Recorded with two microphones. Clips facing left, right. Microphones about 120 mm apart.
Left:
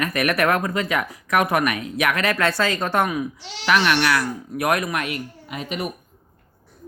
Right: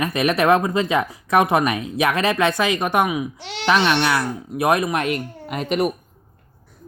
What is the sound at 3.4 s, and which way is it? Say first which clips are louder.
Speech: right 5 dB; 60° right (ahead or behind).